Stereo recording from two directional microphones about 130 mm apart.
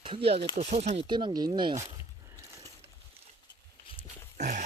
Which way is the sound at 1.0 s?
35° right (ahead or behind).